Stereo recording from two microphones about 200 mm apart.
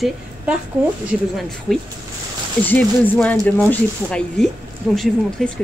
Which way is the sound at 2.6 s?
10° left (ahead or behind).